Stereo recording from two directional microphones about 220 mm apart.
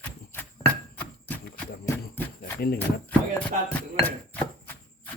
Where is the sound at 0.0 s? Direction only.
10° left (ahead or behind).